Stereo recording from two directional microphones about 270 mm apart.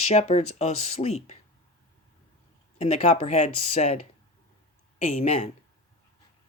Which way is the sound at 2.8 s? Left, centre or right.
Left.